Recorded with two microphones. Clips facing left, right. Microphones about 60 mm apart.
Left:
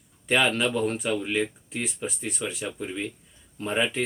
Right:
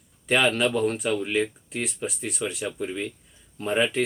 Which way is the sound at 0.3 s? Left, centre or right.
Centre.